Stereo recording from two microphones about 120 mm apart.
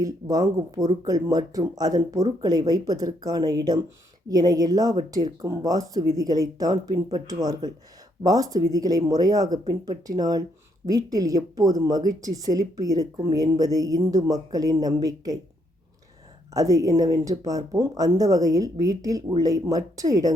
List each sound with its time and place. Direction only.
0.0 s speech: 30° right (ahead or behind)
16.6 s speech: 30° right (ahead or behind)